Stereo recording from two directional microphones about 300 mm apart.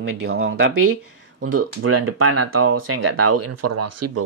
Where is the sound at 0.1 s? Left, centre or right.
Right.